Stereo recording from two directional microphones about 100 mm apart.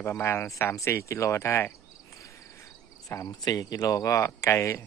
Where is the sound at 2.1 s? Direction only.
30° left (ahead or behind).